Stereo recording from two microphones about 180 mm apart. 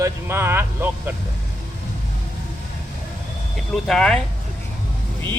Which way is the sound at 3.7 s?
Centre (ahead or behind).